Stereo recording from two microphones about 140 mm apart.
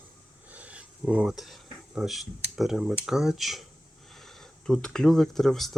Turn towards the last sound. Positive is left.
turn(degrees=0)  # may be behind; listen again after turning